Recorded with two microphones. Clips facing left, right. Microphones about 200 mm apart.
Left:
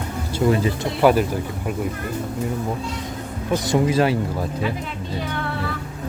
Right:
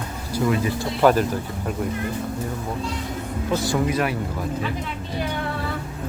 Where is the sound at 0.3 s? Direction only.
30° left (ahead or behind).